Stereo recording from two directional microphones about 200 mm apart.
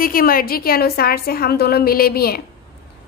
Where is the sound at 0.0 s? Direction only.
45° left (ahead or behind).